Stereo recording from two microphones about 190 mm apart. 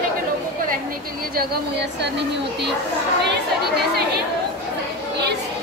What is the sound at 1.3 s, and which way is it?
Speech, 60° right (ahead or behind).